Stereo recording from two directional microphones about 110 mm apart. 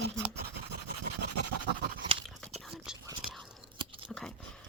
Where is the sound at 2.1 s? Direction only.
60° right (ahead or behind).